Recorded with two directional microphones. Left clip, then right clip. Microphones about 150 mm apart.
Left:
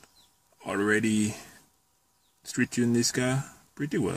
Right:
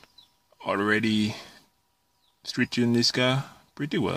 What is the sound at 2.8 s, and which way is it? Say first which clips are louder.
Speech: right 7 dB; 20° right (ahead or behind).